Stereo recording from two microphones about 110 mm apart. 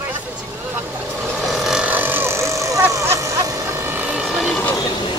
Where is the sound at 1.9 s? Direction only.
20° right (ahead or behind).